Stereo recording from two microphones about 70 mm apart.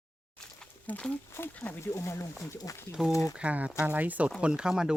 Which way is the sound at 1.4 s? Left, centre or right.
Left.